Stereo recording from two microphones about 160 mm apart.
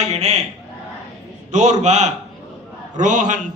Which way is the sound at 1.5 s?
45° right (ahead or behind).